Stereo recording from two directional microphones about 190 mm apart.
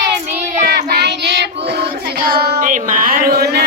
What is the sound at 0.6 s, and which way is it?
Child singing, 60° right (ahead or behind).